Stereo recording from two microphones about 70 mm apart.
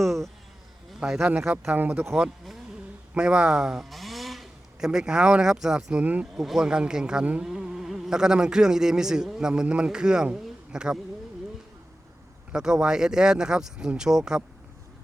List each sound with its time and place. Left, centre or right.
0.0 s speech: centre
1.7 s speech: right
3.2 s speech: centre
6.0 s speech: centre
6.3 s speech: centre
12.5 s speech: centre